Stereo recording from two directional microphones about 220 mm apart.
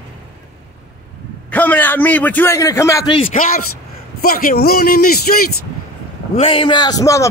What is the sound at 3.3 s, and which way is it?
A man's voice, 40° left (ahead or behind).